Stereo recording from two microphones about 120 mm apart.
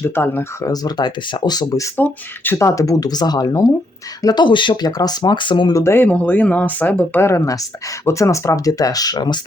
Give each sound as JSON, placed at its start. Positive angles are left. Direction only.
{"t": 0.0, "sound": "speech", "side_deg": 20}
{"t": 0.7, "sound": "speech", "side_deg": 35}
{"t": 2.0, "sound": "speech", "side_deg": 15}
{"t": 5.7, "sound": "speech", "side_deg": 20}
{"t": 7.2, "sound": "speech", "side_deg": 25}